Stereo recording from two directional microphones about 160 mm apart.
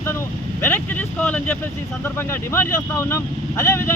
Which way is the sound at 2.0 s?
15° left (ahead or behind).